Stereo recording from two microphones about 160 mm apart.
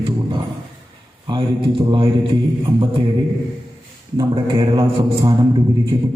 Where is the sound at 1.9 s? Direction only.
30° right (ahead or behind).